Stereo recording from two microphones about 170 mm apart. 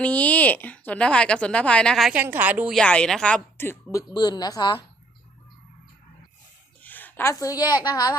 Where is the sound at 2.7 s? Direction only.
5° left (ahead or behind).